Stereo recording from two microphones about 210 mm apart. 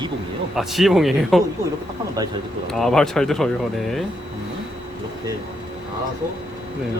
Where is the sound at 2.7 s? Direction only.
Centre (ahead or behind).